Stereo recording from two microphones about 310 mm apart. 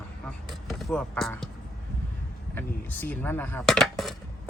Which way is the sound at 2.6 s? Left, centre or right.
Centre.